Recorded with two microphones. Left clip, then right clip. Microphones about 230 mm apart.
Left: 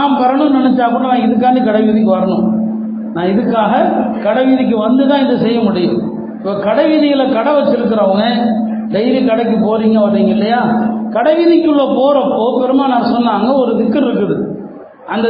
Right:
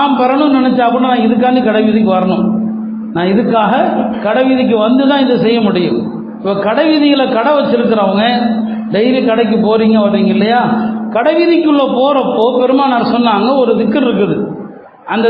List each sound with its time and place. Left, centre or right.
0.0 s a sound: right
1.4 s a man's voice: right
3.5 s a man's voice: right
5.0 s a man's voice: right
7.2 s a man's voice: right